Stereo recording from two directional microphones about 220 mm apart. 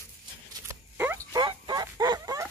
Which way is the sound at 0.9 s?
10° right (ahead or behind).